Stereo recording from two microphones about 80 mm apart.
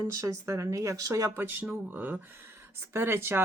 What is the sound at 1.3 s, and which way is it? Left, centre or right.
Speech, right.